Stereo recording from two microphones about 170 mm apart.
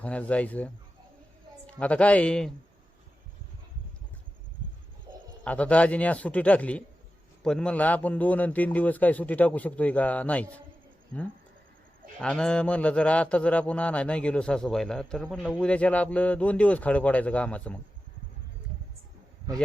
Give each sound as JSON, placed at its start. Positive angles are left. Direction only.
{"t": 0.0, "sound": "speech", "side_deg": 10}
{"t": 1.8, "sound": "speech", "side_deg": 10}
{"t": 5.1, "sound": "bird", "side_deg": -20}
{"t": 5.5, "sound": "speech", "side_deg": 10}